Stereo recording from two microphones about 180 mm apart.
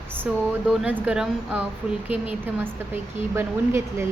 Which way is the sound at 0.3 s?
5° right (ahead or behind).